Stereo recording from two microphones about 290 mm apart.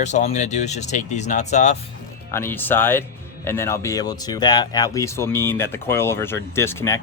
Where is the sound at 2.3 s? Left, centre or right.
Centre.